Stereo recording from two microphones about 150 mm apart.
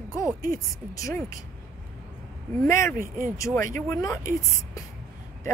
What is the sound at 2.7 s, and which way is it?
Speech, 20° left (ahead or behind).